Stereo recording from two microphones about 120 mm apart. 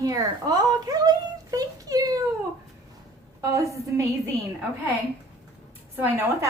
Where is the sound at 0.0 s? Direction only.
30° right (ahead or behind).